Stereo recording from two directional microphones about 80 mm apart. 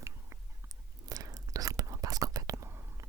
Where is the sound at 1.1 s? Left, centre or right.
Right.